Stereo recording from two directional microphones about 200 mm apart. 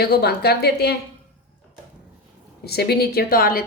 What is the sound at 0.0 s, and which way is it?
Speech, 50° left (ahead or behind).